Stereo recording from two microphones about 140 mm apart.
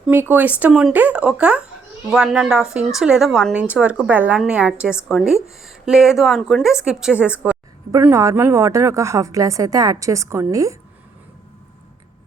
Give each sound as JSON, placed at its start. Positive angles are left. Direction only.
{"t": 0.1, "sound": "a woman's voice", "side_deg": -15}
{"t": 8.0, "sound": "a woman's voice", "side_deg": -20}